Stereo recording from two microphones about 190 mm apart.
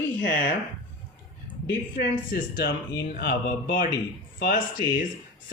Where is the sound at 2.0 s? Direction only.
55° left (ahead or behind).